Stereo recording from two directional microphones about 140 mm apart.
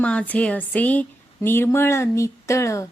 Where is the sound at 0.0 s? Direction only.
10° left (ahead or behind).